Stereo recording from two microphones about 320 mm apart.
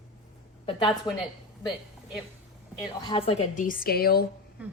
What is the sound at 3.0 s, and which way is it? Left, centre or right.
A woman's voice, centre.